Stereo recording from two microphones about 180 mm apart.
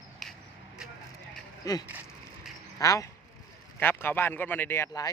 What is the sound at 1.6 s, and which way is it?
Speech, 20° left (ahead or behind).